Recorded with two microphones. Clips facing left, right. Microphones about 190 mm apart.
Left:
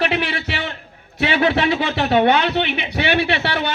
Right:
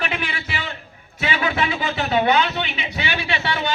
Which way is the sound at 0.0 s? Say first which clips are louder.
Left 6 dB; 70° left (ahead or behind).